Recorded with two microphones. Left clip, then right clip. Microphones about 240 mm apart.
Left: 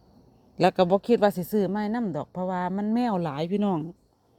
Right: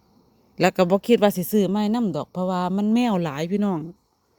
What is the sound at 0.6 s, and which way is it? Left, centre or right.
Speech, centre.